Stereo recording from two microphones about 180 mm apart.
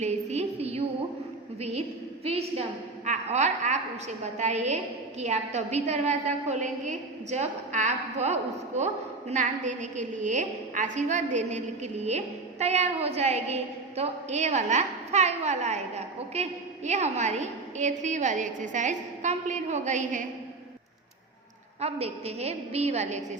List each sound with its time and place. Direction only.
0.0 s a woman's voice: 40° right (ahead or behind)
2.2 s a woman's voice: 35° right (ahead or behind)
21.8 s a woman's voice: 35° right (ahead or behind)